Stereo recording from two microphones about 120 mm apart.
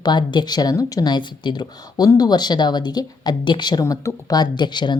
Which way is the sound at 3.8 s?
25° left (ahead or behind).